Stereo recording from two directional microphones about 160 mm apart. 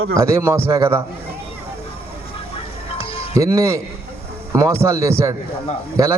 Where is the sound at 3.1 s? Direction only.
35° left (ahead or behind).